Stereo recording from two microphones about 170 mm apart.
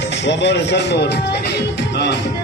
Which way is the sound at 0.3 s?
90° left.